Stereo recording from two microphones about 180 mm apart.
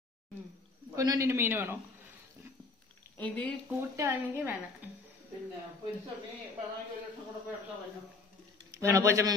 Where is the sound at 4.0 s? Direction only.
15° right (ahead or behind).